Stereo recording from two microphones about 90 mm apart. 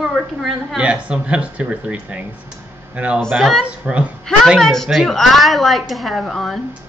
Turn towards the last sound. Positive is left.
turn(degrees=0)  # may be behind; listen again after turning